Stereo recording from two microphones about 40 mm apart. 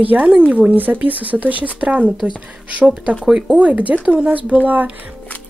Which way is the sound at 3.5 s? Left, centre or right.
Right.